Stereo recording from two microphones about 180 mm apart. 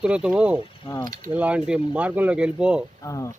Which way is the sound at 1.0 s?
50° right (ahead or behind).